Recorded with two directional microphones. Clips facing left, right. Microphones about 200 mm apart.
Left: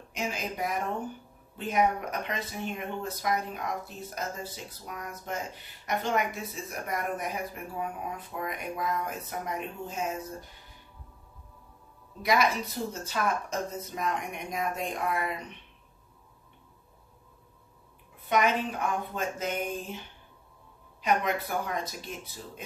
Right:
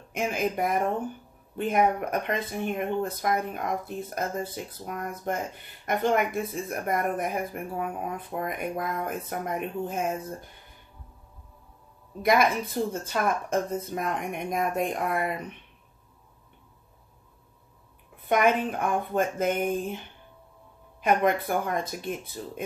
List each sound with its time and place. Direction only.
0.1 s speech: 50° right (ahead or behind)
12.2 s speech: 55° right (ahead or behind)
18.2 s speech: 55° right (ahead or behind)
21.0 s speech: 50° right (ahead or behind)